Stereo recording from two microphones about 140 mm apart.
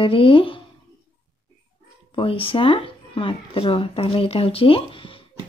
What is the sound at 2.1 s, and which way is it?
Speech, 40° left (ahead or behind).